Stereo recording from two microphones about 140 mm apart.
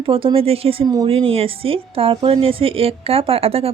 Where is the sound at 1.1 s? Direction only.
40° right (ahead or behind).